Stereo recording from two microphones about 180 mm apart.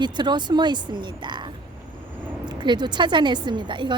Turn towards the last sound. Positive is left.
turn(degrees=-25)  # may be behind; listen again after turning